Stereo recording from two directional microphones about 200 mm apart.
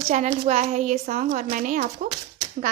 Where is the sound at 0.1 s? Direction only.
35° right (ahead or behind).